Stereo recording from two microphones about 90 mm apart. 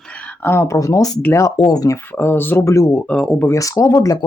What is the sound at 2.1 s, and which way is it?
Speech, 20° left (ahead or behind).